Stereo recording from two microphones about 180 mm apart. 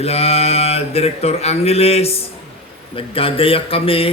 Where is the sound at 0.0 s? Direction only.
35° left (ahead or behind).